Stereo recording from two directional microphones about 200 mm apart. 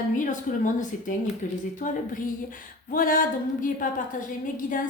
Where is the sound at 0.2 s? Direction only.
40° left (ahead or behind).